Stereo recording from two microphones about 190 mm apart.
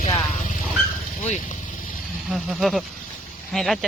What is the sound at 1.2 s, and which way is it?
Speech, 35° left (ahead or behind).